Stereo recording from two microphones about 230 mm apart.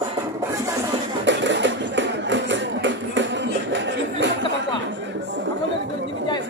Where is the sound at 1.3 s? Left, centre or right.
Right.